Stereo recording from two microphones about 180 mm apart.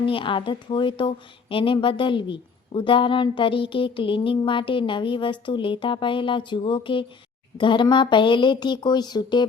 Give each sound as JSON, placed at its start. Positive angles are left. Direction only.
{"t": 0.0, "sound": "a woman's voice", "side_deg": 30}